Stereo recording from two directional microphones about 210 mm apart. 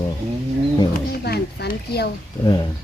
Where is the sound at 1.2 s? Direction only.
50° left (ahead or behind).